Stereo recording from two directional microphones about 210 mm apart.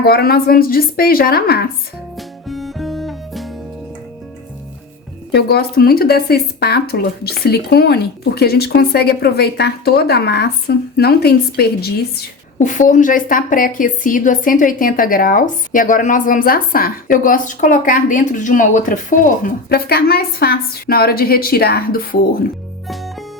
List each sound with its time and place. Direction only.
0.0 s speech: 45° left (ahead or behind)
2.1 s music: centre (ahead or behind)
5.3 s speech: 50° left (ahead or behind)
12.5 s a woman's voice: 35° left (ahead or behind)